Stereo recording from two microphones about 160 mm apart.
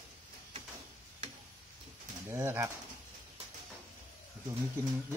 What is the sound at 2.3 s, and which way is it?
Speech, 15° right (ahead or behind).